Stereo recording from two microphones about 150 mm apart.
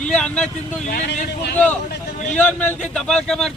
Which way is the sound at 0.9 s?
60° left (ahead or behind).